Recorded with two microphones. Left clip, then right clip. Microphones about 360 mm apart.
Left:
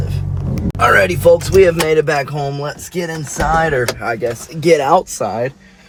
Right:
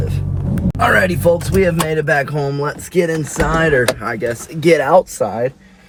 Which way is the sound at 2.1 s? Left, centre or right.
Centre.